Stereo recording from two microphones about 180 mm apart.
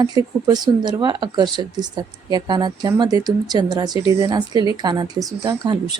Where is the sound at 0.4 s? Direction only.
20° right (ahead or behind).